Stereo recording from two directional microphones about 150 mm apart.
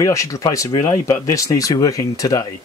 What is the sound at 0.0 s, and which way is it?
Speech, 20° left (ahead or behind).